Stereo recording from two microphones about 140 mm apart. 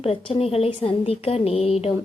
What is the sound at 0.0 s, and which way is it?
A woman's voice, 45° left (ahead or behind).